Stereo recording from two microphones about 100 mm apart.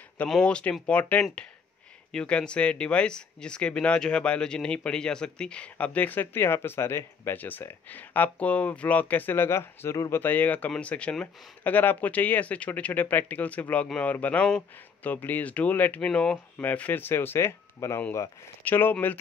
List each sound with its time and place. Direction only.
0.3 s speech: 10° left (ahead or behind); by 10.2 s 30° left (ahead or behind)
10.2 s speech: 15° left (ahead or behind)